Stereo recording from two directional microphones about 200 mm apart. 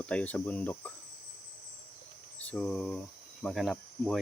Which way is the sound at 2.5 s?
5° left (ahead or behind).